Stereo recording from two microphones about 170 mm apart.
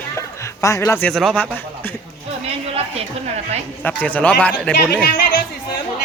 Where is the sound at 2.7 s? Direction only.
35° right (ahead or behind).